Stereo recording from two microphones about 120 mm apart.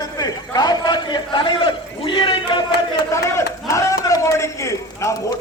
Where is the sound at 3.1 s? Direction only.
25° left (ahead or behind).